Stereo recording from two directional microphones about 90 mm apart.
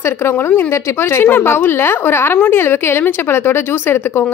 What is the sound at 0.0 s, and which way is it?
Speech, 25° left (ahead or behind).